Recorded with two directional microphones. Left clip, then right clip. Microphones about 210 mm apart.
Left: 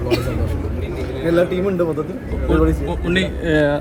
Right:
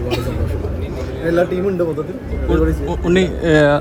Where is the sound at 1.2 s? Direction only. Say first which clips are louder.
Right 1 dB; centre (ahead or behind).